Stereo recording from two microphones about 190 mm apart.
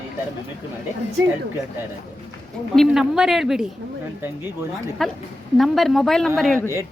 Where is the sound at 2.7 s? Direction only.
Centre (ahead or behind).